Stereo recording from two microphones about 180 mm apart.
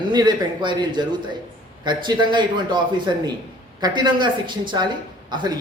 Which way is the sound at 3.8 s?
25° right (ahead or behind).